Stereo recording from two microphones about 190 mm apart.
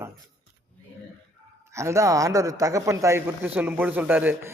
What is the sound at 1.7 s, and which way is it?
Speech, 15° right (ahead or behind).